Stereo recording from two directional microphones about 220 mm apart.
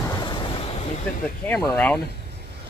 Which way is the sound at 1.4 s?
5° left (ahead or behind).